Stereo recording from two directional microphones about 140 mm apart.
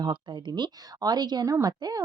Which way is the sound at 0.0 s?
35° right (ahead or behind).